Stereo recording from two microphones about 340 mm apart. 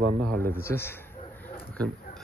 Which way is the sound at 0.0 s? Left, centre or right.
Right.